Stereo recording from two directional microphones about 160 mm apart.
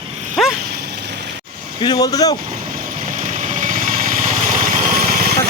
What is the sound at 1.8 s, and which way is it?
Speech, 25° left (ahead or behind).